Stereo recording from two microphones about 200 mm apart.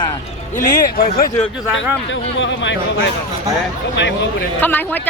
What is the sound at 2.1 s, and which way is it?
Speech, 70° left (ahead or behind).